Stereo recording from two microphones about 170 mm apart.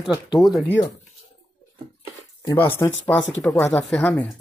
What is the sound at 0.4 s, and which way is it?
Speech, centre (ahead or behind).